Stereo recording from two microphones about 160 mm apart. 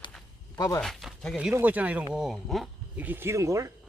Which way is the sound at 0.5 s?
25° left (ahead or behind).